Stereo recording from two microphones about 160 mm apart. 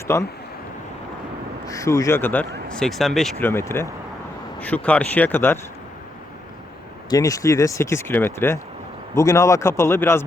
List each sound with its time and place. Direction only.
0.1 s a man's voice: 15° left (ahead or behind)
1.6 s a man's voice: 20° left (ahead or behind); by 3.3 s centre (ahead or behind)
3.4 s a man's voice: 15° left (ahead or behind)
7.1 s a man's voice: 20° left (ahead or behind)